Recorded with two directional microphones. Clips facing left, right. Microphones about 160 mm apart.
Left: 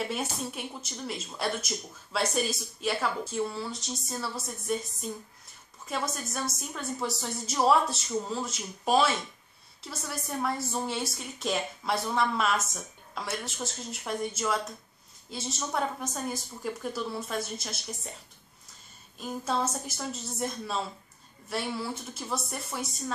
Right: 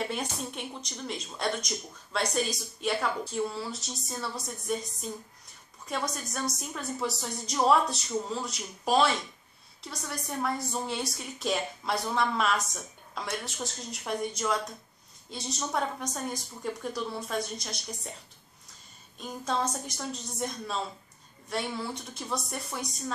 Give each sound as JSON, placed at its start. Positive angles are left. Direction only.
{"t": 0.1, "sound": "a woman's voice", "side_deg": 5}
{"t": 5.9, "sound": "a woman's voice", "side_deg": 0}
{"t": 19.1, "sound": "a woman's voice", "side_deg": 5}